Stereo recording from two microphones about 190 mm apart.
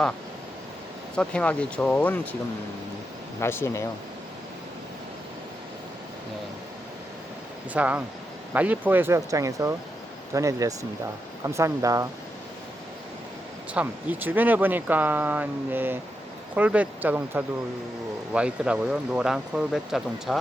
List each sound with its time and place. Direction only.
1.1 s speech: 5° left (ahead or behind)
3.4 s speech: 10° left (ahead or behind)
7.7 s speech: 10° right (ahead or behind)
13.7 s speech: 10° right (ahead or behind)